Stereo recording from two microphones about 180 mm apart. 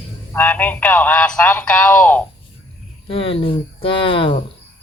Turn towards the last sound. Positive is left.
turn(degrees=30)  # may be behind; listen again after turning